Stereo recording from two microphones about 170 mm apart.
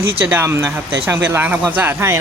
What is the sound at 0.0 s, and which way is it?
Speech, 10° right (ahead or behind).